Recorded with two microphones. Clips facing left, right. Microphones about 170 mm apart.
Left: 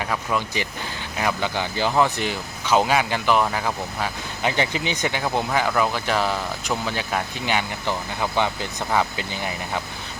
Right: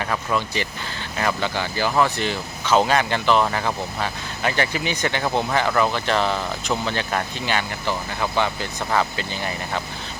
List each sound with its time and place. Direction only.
0.0 s speech: 10° left (ahead or behind)
4.4 s speech: 15° left (ahead or behind)
5.5 s speech: 5° left (ahead or behind)